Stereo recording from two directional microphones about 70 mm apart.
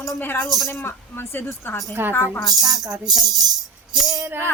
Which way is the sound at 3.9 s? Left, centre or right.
Right.